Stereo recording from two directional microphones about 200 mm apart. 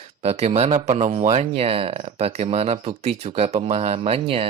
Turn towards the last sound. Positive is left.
turn(degrees=-30)  # may be behind; listen again after turning